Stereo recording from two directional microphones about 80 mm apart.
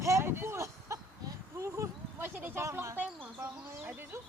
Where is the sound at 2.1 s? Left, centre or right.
Right.